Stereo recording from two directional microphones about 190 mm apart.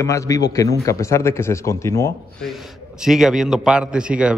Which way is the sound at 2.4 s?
Centre (ahead or behind).